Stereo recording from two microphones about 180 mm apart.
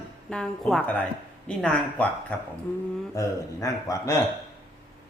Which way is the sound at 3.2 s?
20° left (ahead or behind).